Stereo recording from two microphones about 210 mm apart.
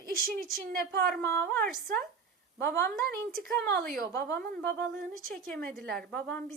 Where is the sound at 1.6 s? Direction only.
40° right (ahead or behind).